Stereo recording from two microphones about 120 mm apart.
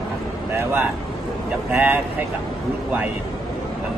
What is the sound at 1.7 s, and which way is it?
Speech, 15° right (ahead or behind).